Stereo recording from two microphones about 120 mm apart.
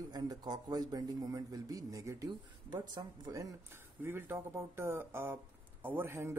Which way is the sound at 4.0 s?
20° right (ahead or behind).